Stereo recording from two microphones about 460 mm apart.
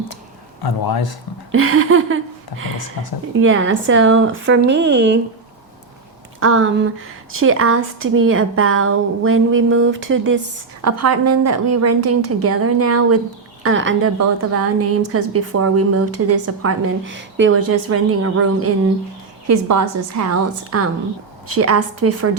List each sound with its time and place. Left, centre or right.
0.6 s speech: left
1.5 s a woman's voice: right
3.4 s a woman's voice: right
6.4 s a woman's voice: right